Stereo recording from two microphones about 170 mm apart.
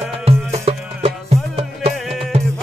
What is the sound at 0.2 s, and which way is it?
Music, 35° right (ahead or behind).